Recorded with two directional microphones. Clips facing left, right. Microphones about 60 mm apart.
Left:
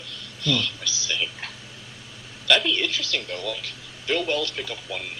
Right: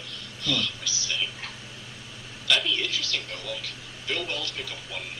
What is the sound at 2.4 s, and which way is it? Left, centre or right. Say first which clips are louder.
A man's voice: left 4 dB; left.